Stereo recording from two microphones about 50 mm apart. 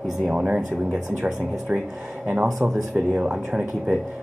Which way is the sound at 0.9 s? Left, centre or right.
Centre.